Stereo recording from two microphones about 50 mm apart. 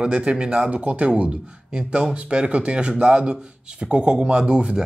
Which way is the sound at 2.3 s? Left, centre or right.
Right.